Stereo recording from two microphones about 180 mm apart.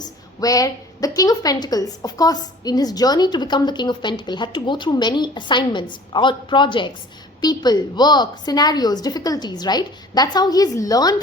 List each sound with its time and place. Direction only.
0.0 s a woman's voice: 20° left (ahead or behind)